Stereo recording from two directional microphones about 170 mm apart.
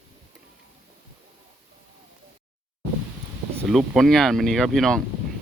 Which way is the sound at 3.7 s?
Centre (ahead or behind).